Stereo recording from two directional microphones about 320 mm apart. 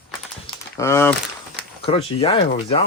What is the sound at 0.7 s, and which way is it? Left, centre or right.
Speech, centre.